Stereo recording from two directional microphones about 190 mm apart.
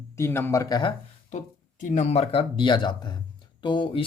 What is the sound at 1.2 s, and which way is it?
Speech, 40° left (ahead or behind).